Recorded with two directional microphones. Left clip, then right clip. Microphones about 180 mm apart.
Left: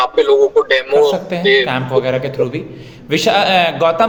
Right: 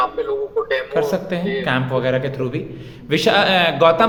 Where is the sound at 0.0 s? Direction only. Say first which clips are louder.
Left 9 dB; 45° left (ahead or behind).